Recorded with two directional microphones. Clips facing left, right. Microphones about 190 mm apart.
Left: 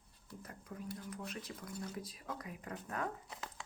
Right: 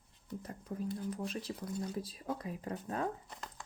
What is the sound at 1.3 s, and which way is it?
Speech, 30° right (ahead or behind).